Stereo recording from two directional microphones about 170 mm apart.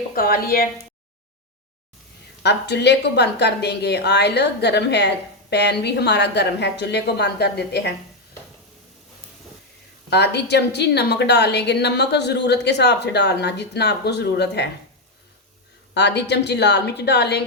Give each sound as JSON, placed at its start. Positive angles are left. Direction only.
{"t": 0.1, "sound": "speech", "side_deg": 60}
{"t": 2.4, "sound": "a woman's voice", "side_deg": 85}
{"t": 10.1, "sound": "a woman's voice", "side_deg": 80}
{"t": 16.0, "sound": "a woman's voice", "side_deg": 85}